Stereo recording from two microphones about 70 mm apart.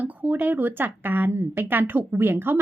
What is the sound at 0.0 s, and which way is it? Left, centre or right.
Speech, right.